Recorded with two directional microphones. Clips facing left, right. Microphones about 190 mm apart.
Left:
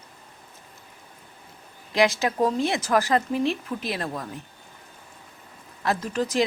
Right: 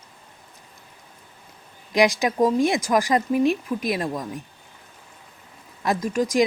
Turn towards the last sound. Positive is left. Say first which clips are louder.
# right 4 dB
turn(degrees=-10)  # may be behind; listen again after turning